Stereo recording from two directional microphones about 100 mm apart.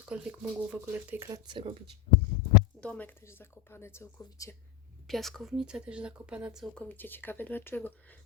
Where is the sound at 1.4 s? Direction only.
60° right (ahead or behind).